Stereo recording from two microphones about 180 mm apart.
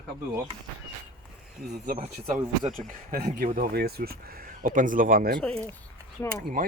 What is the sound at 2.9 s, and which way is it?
Speech, 55° right (ahead or behind).